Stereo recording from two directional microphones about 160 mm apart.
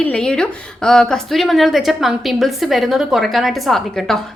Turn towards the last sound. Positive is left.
turn(degrees=0)  # may be behind; listen again after turning